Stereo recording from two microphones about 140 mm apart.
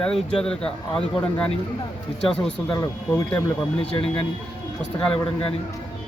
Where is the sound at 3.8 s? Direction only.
45° left (ahead or behind).